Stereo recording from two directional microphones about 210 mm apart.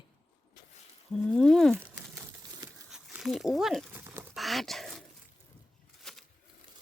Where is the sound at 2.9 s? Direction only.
Centre (ahead or behind).